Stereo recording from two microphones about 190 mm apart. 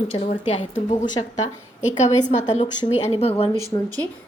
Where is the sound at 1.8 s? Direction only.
40° left (ahead or behind).